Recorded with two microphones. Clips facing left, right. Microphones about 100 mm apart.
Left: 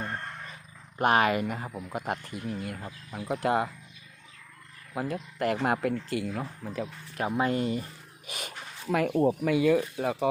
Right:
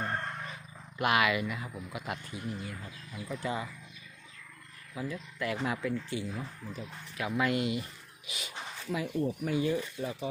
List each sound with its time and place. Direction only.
0.9 s speech: 40° left (ahead or behind); by 3.7 s 60° left (ahead or behind)
4.9 s speech: 55° left (ahead or behind)
7.2 s speech: 35° left (ahead or behind)
8.3 s speech: 50° left (ahead or behind); by 9.2 s 70° left (ahead or behind)
9.4 s speech: 90° left; by 10.2 s 70° left (ahead or behind)